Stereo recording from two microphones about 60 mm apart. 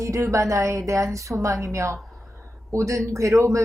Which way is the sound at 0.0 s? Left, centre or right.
Right.